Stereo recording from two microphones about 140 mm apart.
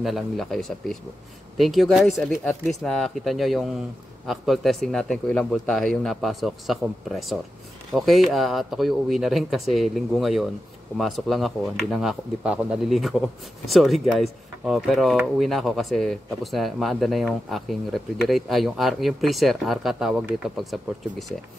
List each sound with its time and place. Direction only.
0.0 s speech: centre (ahead or behind)